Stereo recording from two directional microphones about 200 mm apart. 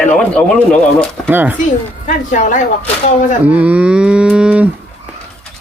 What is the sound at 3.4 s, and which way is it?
Livestock, 5° right (ahead or behind).